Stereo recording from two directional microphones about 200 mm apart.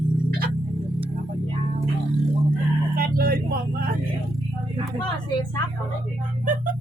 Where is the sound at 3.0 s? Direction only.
45° right (ahead or behind).